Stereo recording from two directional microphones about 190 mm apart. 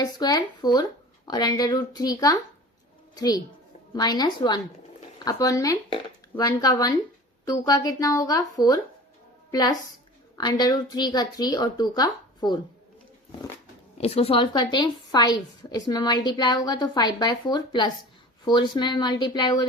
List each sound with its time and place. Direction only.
0.0 s a woman's voice: 20° left (ahead or behind)
14.0 s a woman's voice: 30° left (ahead or behind)